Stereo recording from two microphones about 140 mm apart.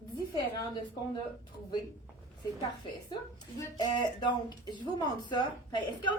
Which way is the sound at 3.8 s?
30° left (ahead or behind).